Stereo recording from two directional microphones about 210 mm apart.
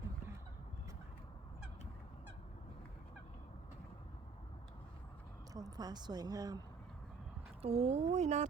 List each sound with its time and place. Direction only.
5.5 s speech: 20° right (ahead or behind)
7.6 s speech: 30° right (ahead or behind)